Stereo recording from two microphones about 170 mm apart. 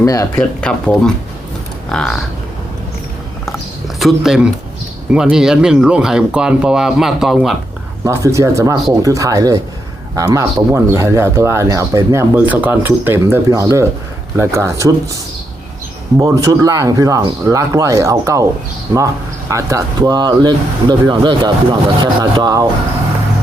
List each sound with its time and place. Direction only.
0.0 s speech: 20° left (ahead or behind)
0.3 s speech: 5° left (ahead or behind)
3.4 s a sound: centre (ahead or behind)
5.1 s speech: 5° right (ahead or behind)
8.0 s speech: 15° right (ahead or behind)
16.1 s speech: 20° right (ahead or behind)
19.5 s speech: 20° right (ahead or behind)